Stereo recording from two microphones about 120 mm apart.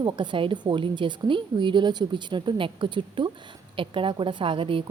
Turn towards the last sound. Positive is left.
turn(degrees=-45)  # may be behind; listen again after turning